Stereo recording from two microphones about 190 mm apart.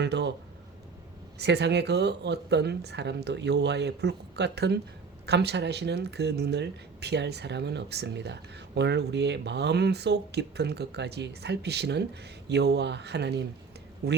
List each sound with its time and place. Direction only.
0.0 s speech: 65° right (ahead or behind)
1.4 s speech: 60° right (ahead or behind)